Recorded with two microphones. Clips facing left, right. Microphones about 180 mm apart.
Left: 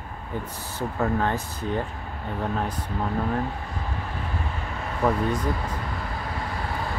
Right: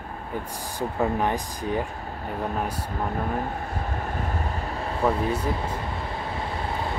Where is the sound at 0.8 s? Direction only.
15° right (ahead or behind).